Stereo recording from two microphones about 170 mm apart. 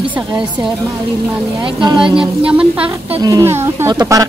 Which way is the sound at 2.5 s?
5° right (ahead or behind).